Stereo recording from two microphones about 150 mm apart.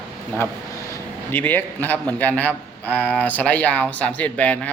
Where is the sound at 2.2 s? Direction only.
10° left (ahead or behind).